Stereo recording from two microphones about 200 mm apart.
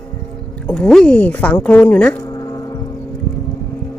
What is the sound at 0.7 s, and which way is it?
Speech, 5° left (ahead or behind).